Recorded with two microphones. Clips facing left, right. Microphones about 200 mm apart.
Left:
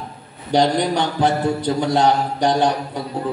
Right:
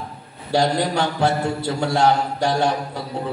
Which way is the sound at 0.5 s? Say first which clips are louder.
Left 2 dB; 20° left (ahead or behind).